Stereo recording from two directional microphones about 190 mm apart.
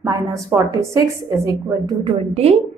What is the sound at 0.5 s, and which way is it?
A woman's voice, 15° right (ahead or behind).